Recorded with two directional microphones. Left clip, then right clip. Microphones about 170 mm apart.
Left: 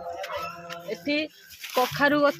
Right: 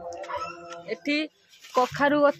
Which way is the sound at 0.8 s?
25° right (ahead or behind).